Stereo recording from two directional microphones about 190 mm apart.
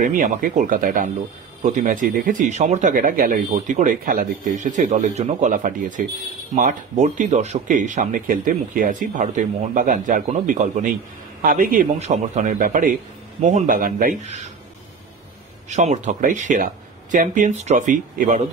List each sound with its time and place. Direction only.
0.0 s speech: 45° right (ahead or behind)
15.7 s speech: 40° right (ahead or behind)